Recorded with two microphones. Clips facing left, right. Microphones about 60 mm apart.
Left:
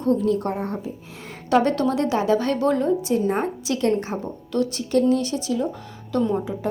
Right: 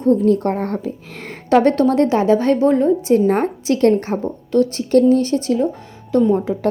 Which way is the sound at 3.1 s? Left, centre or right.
Right.